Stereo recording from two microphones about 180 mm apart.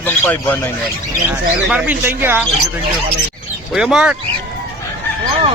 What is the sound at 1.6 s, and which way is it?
Speech, 10° right (ahead or behind).